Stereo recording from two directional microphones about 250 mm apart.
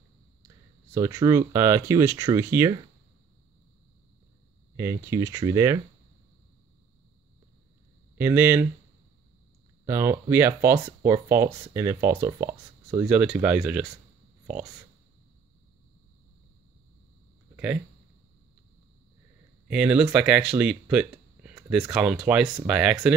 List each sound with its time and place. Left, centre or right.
0.9 s speech: centre
4.7 s speech: centre
8.2 s speech: centre
9.8 s speech: centre
19.7 s speech: centre